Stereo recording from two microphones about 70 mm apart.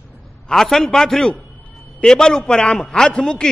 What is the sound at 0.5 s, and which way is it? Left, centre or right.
A man's voice, centre.